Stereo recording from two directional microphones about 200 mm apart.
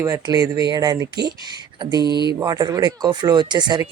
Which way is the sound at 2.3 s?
20° right (ahead or behind).